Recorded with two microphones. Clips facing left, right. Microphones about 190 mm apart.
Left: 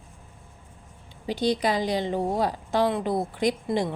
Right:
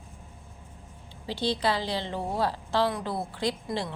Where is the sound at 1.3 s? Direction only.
15° left (ahead or behind).